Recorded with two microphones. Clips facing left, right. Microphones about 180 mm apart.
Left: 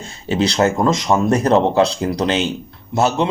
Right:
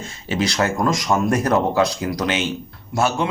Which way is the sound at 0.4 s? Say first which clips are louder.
Left 4 dB; 25° left (ahead or behind).